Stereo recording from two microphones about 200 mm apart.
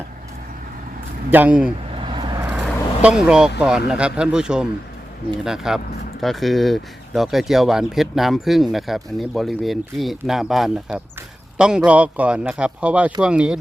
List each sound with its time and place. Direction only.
1.3 s speech: 10° right (ahead or behind)
2.0 s vehicle: 25° right (ahead or behind)
2.5 s vehicle: 5° right (ahead or behind)
3.6 s a man's voice: 5° right (ahead or behind)